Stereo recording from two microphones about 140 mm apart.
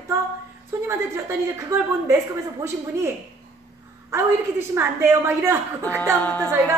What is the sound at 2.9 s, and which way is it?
Speech, 20° right (ahead or behind).